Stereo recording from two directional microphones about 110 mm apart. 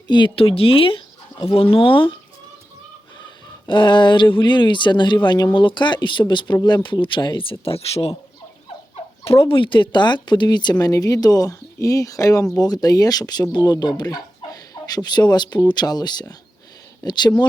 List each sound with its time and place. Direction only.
0.1 s speech: 50° left (ahead or behind)
3.7 s speech: 45° left (ahead or behind)
7.6 s speech: 60° left (ahead or behind)
9.2 s speech: 60° left (ahead or behind); by 17.3 s 40° left (ahead or behind)